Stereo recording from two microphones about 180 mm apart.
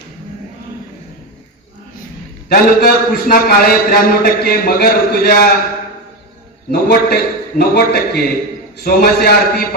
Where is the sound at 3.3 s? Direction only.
55° left (ahead or behind).